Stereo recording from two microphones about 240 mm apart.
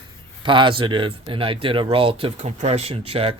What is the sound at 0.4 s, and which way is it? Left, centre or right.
Speech, right.